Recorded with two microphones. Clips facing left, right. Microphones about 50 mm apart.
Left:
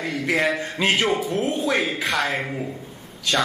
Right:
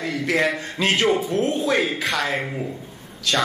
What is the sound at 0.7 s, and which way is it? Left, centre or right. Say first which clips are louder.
Speech: right 3 dB; centre.